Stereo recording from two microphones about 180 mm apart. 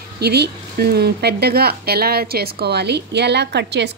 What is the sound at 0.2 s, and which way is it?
Speech, 65° right (ahead or behind).